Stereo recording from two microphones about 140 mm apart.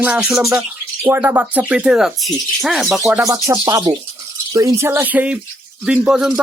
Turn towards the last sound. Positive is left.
turn(degrees=-5)  # may be behind; listen again after turning